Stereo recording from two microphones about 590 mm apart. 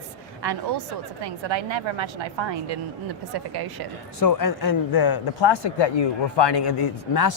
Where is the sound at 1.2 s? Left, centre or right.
Right.